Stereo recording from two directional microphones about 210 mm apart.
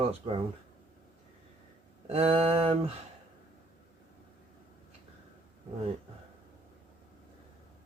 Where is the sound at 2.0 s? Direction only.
30° right (ahead or behind).